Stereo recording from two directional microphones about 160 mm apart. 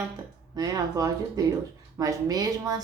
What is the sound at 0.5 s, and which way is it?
Speech, 20° right (ahead or behind).